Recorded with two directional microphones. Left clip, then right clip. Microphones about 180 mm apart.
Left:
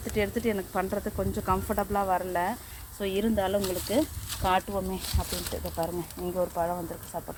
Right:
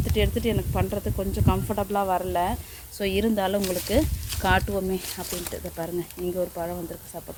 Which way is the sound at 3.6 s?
35° right (ahead or behind).